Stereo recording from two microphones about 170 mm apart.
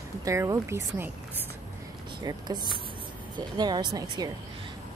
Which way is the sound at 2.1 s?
25° right (ahead or behind).